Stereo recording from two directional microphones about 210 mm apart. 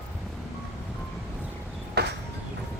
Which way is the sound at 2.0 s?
50° right (ahead or behind).